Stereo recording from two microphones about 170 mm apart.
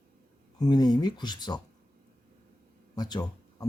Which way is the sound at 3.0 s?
25° left (ahead or behind).